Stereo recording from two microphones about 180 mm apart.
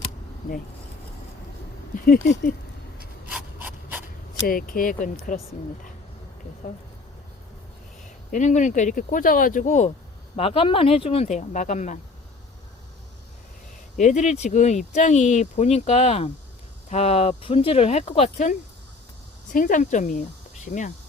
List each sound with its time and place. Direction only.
2.0 s speech: 55° left (ahead or behind)
3.2 s rub: 10° right (ahead or behind)
4.4 s speech: 50° left (ahead or behind)
6.6 s speech: 45° left (ahead or behind)
8.3 s speech: 40° left (ahead or behind)
13.9 s speech: 45° left (ahead or behind)
19.5 s speech: 45° left (ahead or behind)